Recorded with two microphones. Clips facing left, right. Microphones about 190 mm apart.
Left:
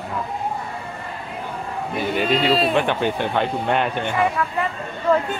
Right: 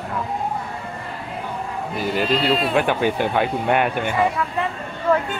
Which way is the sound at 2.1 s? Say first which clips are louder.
Left 1 dB; centre (ahead or behind).